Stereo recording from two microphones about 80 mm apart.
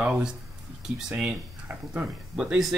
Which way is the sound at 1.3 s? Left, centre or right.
Centre.